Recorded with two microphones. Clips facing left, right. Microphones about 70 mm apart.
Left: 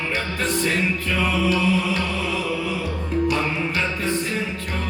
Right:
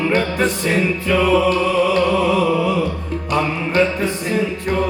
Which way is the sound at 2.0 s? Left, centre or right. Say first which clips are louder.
Right 10 dB; right.